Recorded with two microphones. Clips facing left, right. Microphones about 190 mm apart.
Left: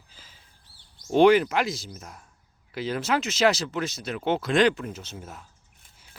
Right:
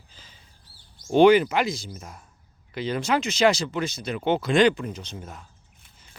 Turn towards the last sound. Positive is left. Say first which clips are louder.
# right 2 dB
turn(degrees=5)  # may be behind; listen again after turning